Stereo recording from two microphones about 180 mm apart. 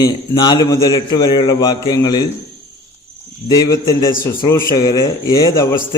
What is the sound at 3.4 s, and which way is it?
A man's voice, 20° left (ahead or behind).